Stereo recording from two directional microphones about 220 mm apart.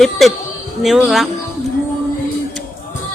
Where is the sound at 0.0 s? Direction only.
Centre (ahead or behind).